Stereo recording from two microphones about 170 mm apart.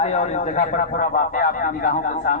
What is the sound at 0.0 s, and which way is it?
Speech, 40° left (ahead or behind).